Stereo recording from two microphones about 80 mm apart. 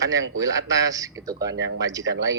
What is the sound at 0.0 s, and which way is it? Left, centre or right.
Speech, right.